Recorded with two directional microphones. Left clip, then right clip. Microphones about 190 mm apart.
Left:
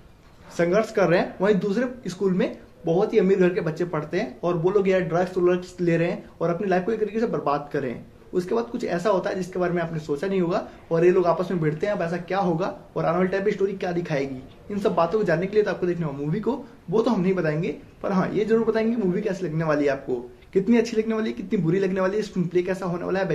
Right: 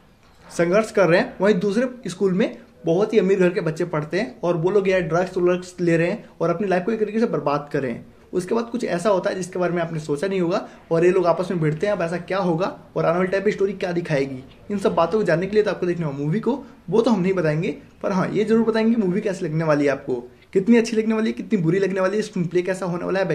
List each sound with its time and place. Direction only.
0.6 s speech: 50° right (ahead or behind)